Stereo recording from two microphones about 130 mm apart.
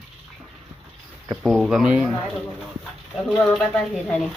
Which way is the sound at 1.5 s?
Centre (ahead or behind).